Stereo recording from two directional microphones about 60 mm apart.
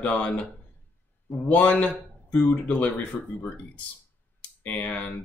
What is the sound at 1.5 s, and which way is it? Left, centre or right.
Speech, left.